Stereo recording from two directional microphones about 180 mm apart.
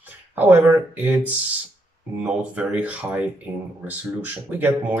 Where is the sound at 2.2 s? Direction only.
5° right (ahead or behind).